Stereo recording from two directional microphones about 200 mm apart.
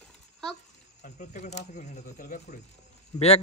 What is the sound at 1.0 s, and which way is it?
Speech, 35° left (ahead or behind).